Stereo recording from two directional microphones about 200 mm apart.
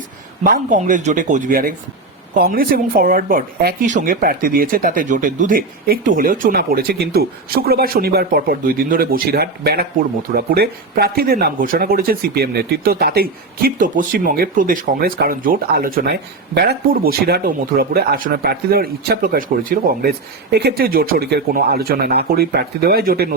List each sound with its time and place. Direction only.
0.4 s speech: 45° right (ahead or behind)